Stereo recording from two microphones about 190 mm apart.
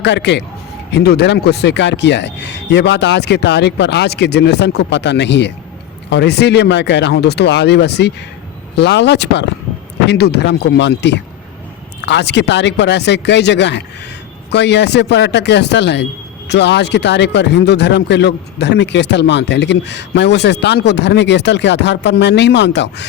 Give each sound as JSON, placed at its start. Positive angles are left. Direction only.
{"t": 0.0, "sound": "speech", "side_deg": 65}